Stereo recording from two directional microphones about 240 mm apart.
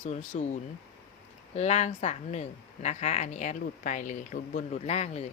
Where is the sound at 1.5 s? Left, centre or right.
Left.